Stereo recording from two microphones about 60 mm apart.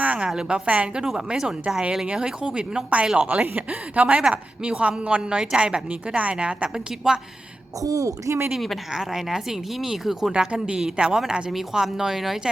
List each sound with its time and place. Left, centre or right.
0.0 s a sound: right
0.3 s a woman's voice: centre
6.7 s a woman's voice: centre
7.8 s a woman's voice: right
8.5 s a woman's voice: centre
10.3 s a woman's voice: centre